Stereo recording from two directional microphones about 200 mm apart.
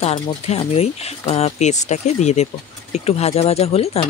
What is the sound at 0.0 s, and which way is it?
Speech, 30° left (ahead or behind).